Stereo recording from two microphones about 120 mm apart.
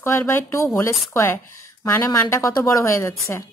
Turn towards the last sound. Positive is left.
turn(degrees=25)  # may be behind; listen again after turning